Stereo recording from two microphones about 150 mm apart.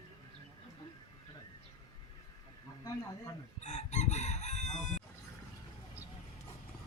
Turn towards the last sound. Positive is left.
turn(degrees=50)  # may be behind; listen again after turning